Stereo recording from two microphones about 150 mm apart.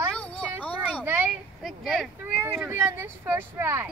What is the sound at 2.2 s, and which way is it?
Speech, 15° right (ahead or behind).